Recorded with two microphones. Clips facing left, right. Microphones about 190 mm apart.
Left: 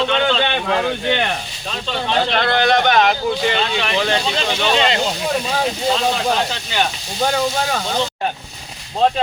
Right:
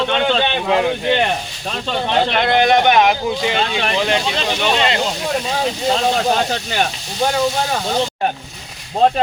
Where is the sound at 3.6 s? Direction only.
50° right (ahead or behind).